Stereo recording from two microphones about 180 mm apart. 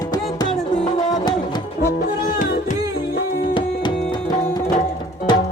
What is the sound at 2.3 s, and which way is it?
Music, 45° left (ahead or behind).